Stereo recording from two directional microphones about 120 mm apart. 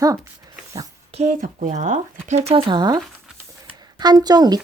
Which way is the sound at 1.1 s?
80° right.